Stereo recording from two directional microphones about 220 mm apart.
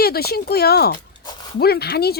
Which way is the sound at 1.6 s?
45° left (ahead or behind).